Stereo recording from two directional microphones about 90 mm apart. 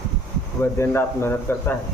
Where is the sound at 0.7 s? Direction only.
30° left (ahead or behind).